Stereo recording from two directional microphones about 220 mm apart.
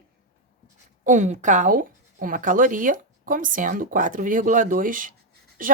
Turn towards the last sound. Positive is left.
turn(degrees=-40)  # may be behind; listen again after turning